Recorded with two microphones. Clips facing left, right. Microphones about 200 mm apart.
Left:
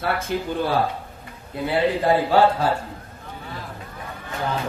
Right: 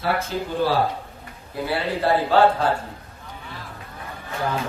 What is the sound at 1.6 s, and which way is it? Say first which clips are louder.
A man's voice: left 3 dB; 15° left (ahead or behind).